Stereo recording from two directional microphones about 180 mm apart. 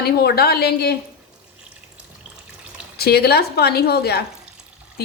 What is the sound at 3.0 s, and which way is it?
A woman's voice, 60° left (ahead or behind).